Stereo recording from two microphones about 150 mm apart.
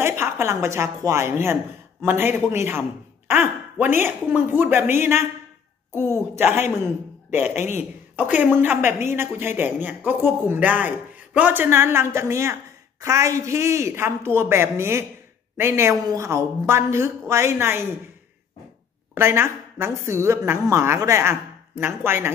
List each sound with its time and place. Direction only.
0.0 s speech: 15° right (ahead or behind)
19.1 s speech: 15° right (ahead or behind)